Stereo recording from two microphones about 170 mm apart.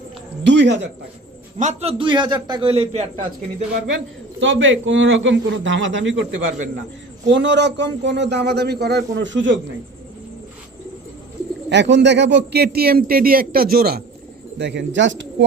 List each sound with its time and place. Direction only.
0.4 s a man's voice: 90° right
1.5 s a man's voice: 40° right (ahead or behind)
4.4 s a man's voice: 90° right
11.7 s a man's voice: 90° right; by 14.0 s 60° right (ahead or behind)
14.6 s a man's voice: 85° right